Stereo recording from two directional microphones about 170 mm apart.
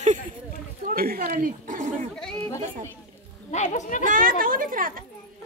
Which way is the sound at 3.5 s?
45° left (ahead or behind).